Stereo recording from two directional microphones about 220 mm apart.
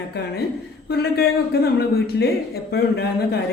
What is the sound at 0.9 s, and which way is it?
Speech, 45° left (ahead or behind).